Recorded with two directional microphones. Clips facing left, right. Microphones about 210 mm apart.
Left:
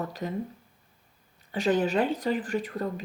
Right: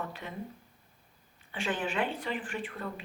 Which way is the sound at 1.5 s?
40° left (ahead or behind).